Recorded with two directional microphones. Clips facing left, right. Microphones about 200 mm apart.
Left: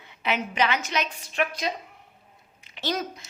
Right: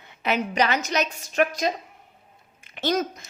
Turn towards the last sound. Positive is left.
turn(degrees=-45)  # may be behind; listen again after turning